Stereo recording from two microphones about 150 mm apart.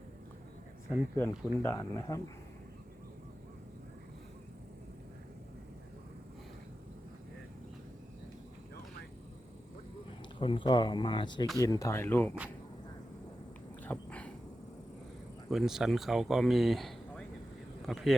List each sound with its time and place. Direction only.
0.9 s speech: 15° left (ahead or behind)
10.4 s speech: 35° left (ahead or behind); by 12.3 s 15° left (ahead or behind)
13.8 s dog: 10° left (ahead or behind)
15.4 s speech: 5° right (ahead or behind)